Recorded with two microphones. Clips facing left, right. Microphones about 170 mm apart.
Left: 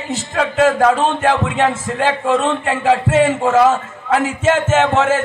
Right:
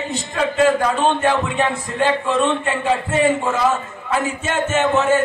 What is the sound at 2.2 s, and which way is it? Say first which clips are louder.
Music: left 2 dB; 90° left.